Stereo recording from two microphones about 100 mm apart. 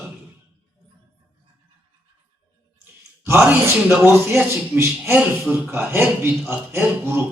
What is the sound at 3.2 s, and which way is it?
A man's voice, 25° right (ahead or behind).